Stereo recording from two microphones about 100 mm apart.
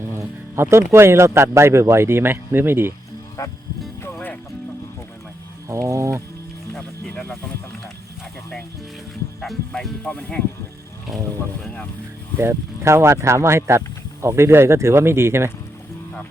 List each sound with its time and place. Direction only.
0.0 s speech: 25° right (ahead or behind)
4.0 s music: 20° left (ahead or behind)
5.6 s a sound: 30° right (ahead or behind)
7.1 s speech: 20° left (ahead or behind)
9.4 s speech: centre (ahead or behind)
11.6 s speech: 10° left (ahead or behind)
12.4 s speech: 25° right (ahead or behind)